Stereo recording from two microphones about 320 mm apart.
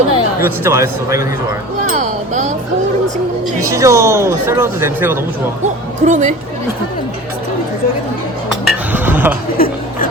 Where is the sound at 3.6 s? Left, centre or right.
Centre.